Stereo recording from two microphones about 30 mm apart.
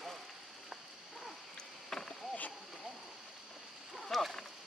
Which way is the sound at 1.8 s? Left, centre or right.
Centre.